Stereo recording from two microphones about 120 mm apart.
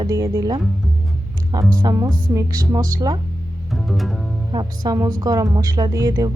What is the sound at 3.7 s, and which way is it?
Music, centre (ahead or behind).